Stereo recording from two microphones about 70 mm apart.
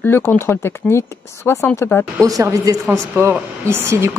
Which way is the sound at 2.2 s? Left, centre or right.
Right.